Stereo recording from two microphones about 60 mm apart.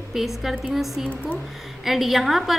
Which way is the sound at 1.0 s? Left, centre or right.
Right.